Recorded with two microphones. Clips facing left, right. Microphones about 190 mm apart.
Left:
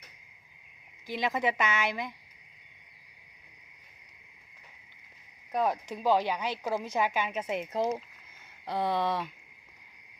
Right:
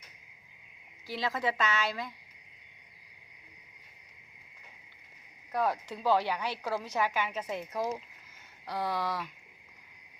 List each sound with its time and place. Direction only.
1.0 s speech: 20° left (ahead or behind)
5.5 s speech: 20° left (ahead or behind)